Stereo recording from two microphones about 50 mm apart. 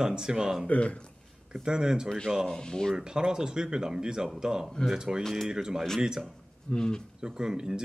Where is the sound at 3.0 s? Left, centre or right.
Centre.